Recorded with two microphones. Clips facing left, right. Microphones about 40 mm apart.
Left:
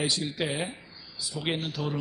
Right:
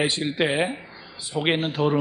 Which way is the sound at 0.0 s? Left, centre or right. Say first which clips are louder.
Right 6 dB; right.